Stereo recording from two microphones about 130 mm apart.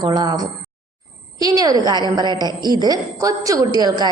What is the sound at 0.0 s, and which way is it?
A woman's voice, 30° right (ahead or behind).